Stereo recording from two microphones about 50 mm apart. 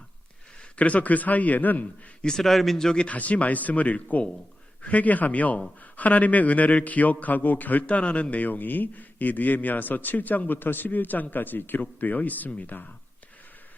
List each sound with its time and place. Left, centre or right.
0.8 s a man's voice: left
2.2 s speech: centre
3.1 s a man's voice: left